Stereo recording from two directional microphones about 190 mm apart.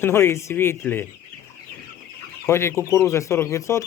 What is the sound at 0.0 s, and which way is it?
Speech, 15° left (ahead or behind).